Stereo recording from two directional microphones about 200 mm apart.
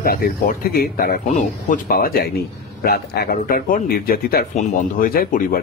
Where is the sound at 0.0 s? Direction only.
45° left (ahead or behind).